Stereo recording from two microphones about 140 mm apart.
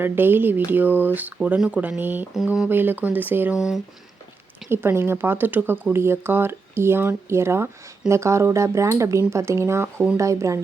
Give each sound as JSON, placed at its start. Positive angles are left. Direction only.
{"t": 0.0, "sound": "speech", "side_deg": -15}
{"t": 2.6, "sound": "speech", "side_deg": -15}
{"t": 4.7, "sound": "speech", "side_deg": -15}